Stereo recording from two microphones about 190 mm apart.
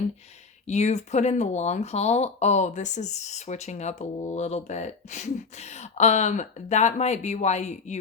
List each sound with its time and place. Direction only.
0.7 s speech: 35° left (ahead or behind)